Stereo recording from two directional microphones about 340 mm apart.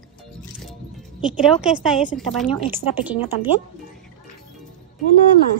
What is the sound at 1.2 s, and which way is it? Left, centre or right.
Speech, centre.